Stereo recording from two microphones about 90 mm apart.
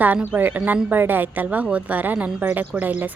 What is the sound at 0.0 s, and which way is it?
A woman's voice, 20° right (ahead or behind).